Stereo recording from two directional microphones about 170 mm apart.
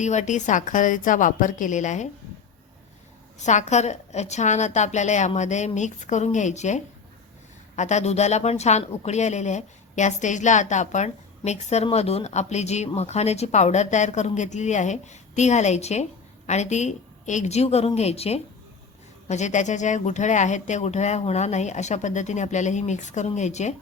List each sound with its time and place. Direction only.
0.0 s a woman's voice: 45° left (ahead or behind)
3.3 s a woman's voice: 45° left (ahead or behind)